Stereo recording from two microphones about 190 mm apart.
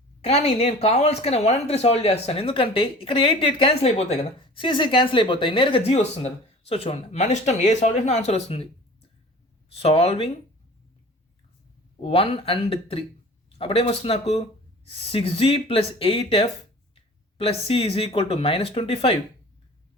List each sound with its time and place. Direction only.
0.2 s speech: 35° left (ahead or behind)
12.0 s speech: 30° left (ahead or behind)